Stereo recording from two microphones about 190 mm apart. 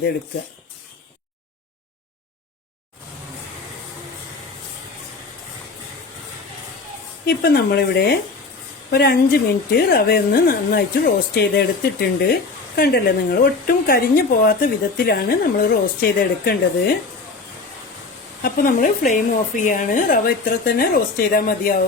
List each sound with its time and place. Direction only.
7.3 s a woman's voice: 55° left (ahead or behind)
18.4 s a woman's voice: 45° left (ahead or behind)